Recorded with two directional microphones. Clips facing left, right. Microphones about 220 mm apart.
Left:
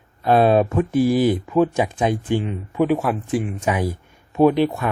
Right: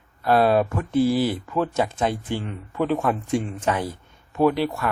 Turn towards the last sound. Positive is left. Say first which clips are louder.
# left 5 dB
turn(degrees=20)  # may be behind; listen again after turning